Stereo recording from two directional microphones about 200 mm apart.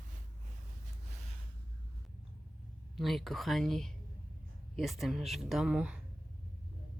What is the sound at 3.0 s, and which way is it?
Speech, centre (ahead or behind).